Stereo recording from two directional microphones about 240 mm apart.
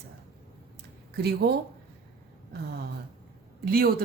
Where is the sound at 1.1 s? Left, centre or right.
Right.